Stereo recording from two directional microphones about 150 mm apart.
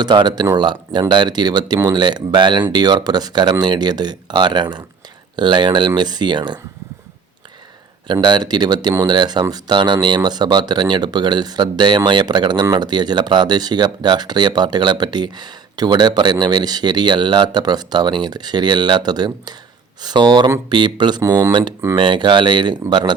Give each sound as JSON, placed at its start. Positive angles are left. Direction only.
{"t": 0.0, "sound": "speech", "side_deg": -30}
{"t": 8.0, "sound": "speech", "side_deg": -30}